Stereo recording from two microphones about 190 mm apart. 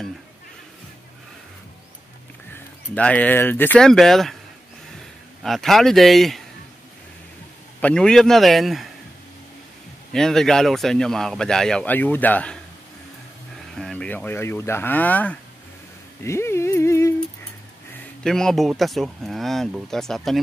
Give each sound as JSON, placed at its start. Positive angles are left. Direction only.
{"t": 2.5, "sound": "speech", "side_deg": 10}
{"t": 5.4, "sound": "speech", "side_deg": 0}
{"t": 7.8, "sound": "speech", "side_deg": 5}
{"t": 10.1, "sound": "speech", "side_deg": 0}
{"t": 13.7, "sound": "speech", "side_deg": 5}
{"t": 16.3, "sound": "a sound", "side_deg": 15}
{"t": 18.2, "sound": "speech", "side_deg": 0}